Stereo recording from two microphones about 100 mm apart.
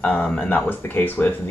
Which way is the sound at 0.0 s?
10° left (ahead or behind).